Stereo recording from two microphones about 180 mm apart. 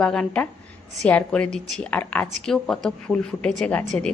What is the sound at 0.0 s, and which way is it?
A woman's voice, 5° left (ahead or behind).